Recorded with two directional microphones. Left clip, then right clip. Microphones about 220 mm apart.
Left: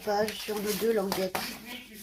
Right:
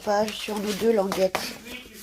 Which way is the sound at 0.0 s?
35° right (ahead or behind).